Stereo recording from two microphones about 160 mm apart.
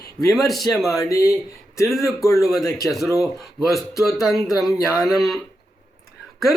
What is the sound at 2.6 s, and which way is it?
Speech, 20° left (ahead or behind).